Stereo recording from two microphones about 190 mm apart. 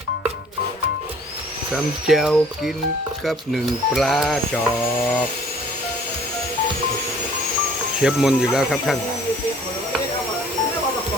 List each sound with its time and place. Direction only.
1.7 s speech: centre (ahead or behind)
8.0 s speech: centre (ahead or behind)